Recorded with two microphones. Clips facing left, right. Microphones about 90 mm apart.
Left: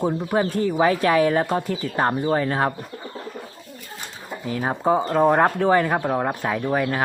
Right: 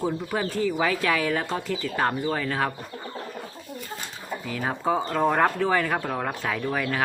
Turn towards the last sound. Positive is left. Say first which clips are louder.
# left 4 dB
turn(degrees=25)  # may be behind; listen again after turning